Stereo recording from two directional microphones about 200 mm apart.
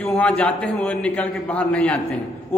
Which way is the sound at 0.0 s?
5° left (ahead or behind).